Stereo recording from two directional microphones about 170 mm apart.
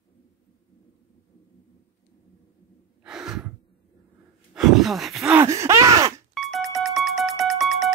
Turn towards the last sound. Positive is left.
turn(degrees=0)  # may be behind; listen again after turning